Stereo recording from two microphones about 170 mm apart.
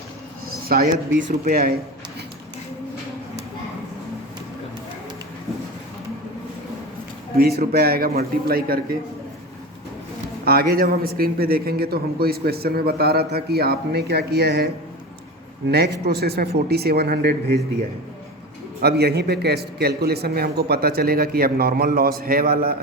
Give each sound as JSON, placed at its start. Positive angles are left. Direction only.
{"t": 0.7, "sound": "a man's voice", "side_deg": -60}
{"t": 7.3, "sound": "a man's voice", "side_deg": -65}
{"t": 10.4, "sound": "a man's voice", "side_deg": -60}
{"t": 15.7, "sound": "a man's voice", "side_deg": -70}
{"t": 18.8, "sound": "a man's voice", "side_deg": -70}